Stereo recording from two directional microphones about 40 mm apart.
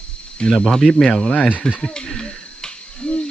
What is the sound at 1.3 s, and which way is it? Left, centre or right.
Speech, left.